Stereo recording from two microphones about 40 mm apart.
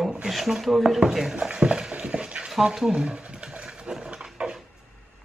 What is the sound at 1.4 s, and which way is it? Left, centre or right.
Dog, right.